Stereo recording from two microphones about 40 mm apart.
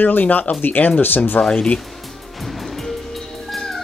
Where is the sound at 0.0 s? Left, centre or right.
Left.